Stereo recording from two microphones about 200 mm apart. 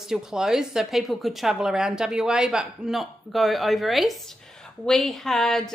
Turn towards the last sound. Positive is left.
turn(degrees=0)  # may be behind; listen again after turning